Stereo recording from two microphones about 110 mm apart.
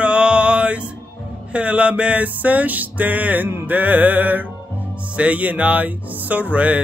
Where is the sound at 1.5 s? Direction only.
10° right (ahead or behind).